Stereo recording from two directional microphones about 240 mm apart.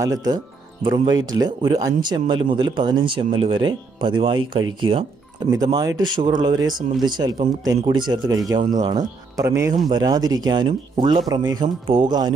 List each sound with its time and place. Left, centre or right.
0.0 s speech: centre
5.5 s speech: centre